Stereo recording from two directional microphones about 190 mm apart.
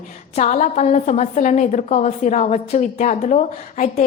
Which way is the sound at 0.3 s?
35° left (ahead or behind).